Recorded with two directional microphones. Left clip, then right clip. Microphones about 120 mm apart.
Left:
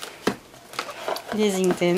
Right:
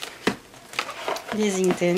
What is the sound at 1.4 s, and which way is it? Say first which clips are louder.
Speech: left 2 dB; 25° left (ahead or behind).